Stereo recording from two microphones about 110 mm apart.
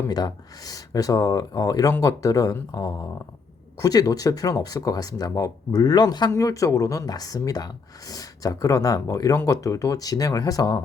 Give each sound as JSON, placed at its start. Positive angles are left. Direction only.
{"t": 0.1, "sound": "speech", "side_deg": 35}